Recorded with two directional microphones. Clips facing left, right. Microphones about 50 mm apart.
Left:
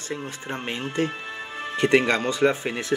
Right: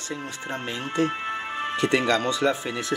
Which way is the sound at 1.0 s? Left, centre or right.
Right.